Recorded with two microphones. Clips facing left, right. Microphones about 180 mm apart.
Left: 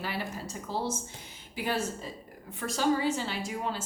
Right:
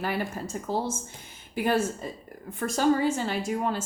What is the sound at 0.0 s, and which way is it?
A woman's voice, 50° right (ahead or behind).